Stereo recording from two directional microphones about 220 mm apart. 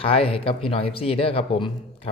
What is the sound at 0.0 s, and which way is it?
Speech, 25° left (ahead or behind).